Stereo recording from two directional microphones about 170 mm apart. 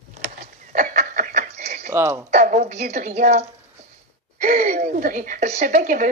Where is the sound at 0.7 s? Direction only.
50° right (ahead or behind).